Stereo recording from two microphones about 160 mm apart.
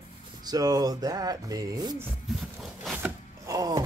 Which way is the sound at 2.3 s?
Centre (ahead or behind).